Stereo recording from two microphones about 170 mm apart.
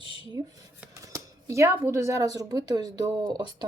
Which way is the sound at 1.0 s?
20° right (ahead or behind).